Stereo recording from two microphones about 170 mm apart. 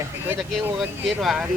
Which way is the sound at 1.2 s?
5° right (ahead or behind).